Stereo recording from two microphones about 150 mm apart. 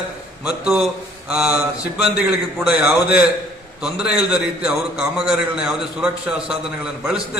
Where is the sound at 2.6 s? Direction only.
5° right (ahead or behind).